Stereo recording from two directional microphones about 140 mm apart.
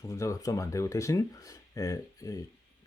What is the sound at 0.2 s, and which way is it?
Speech, 25° left (ahead or behind).